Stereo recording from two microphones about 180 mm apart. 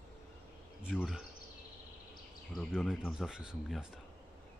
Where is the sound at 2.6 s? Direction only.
Centre (ahead or behind).